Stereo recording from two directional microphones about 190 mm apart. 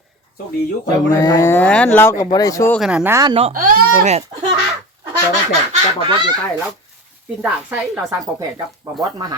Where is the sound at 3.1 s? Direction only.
25° right (ahead or behind).